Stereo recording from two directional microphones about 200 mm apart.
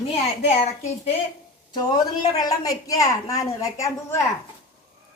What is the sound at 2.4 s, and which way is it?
A woman's voice, 20° left (ahead or behind).